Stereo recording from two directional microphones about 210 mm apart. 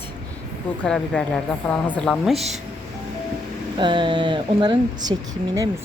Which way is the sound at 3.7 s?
20° right (ahead or behind).